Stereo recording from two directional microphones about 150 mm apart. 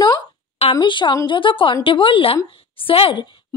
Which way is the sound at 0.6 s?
35° left (ahead or behind).